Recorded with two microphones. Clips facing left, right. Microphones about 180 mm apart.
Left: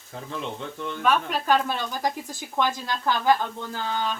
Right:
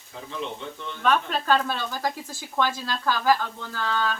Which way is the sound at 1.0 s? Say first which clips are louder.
Even; 10° left (ahead or behind).